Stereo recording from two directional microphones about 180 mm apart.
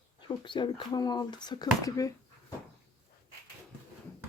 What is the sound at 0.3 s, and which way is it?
Speech, 25° left (ahead or behind).